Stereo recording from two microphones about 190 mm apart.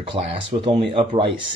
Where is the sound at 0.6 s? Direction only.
30° right (ahead or behind).